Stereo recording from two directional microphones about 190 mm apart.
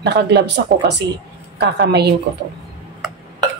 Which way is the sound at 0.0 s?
60° right (ahead or behind).